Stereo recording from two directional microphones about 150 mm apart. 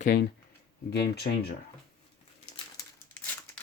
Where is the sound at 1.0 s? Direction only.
90° left.